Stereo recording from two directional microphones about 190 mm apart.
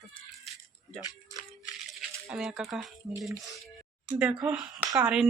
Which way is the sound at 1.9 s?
Centre (ahead or behind).